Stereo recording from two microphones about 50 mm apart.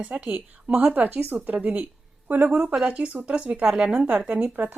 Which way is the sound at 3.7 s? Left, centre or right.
Centre.